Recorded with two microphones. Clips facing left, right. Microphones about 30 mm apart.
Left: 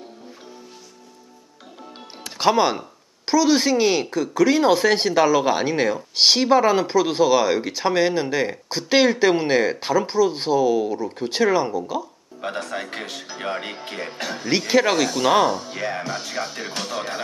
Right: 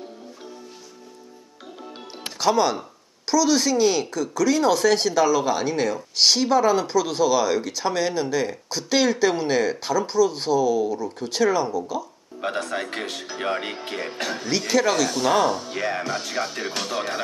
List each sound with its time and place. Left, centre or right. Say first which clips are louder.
2.3 s speech: left 2 dB; left
12.4 s speech: right 1 dB; centre
14.7 s speech: left 2 dB; left
15.0 s speech: left 2 dB; centre